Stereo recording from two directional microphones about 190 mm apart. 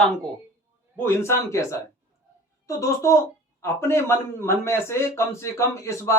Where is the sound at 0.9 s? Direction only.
10° left (ahead or behind).